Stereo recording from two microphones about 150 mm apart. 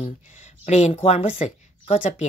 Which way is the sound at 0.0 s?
45° left (ahead or behind).